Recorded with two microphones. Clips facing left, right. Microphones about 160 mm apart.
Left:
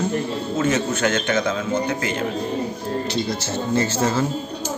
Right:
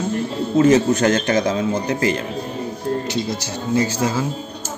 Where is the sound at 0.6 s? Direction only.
35° right (ahead or behind).